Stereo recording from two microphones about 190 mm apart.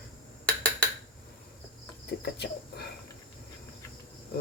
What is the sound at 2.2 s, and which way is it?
Speech, 60° left (ahead or behind).